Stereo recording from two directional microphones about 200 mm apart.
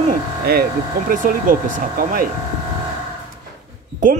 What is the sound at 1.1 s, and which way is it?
Speech, 40° right (ahead or behind).